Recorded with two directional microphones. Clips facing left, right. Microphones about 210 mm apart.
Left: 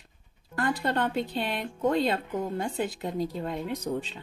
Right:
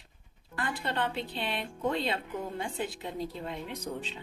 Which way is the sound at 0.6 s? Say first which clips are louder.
Left 5 dB; 45° left (ahead or behind).